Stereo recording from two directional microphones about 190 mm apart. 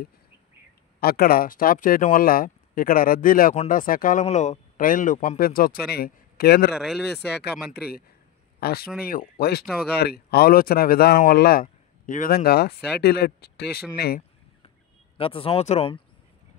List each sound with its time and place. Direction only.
1.0 s speech: 50° left (ahead or behind)
6.7 s speech: centre (ahead or behind)
8.5 s speech: 55° left (ahead or behind)
15.1 s speech: 30° left (ahead or behind)